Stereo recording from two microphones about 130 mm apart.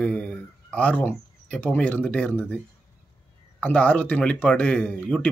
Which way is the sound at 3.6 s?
10° left (ahead or behind).